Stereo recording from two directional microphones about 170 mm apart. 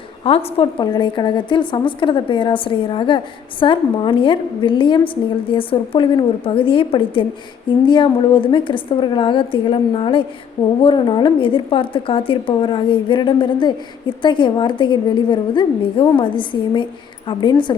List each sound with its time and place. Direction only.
0.3 s a woman's voice: 35° left (ahead or behind)